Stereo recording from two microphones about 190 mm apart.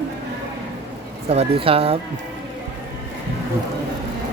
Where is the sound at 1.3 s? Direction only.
30° right (ahead or behind).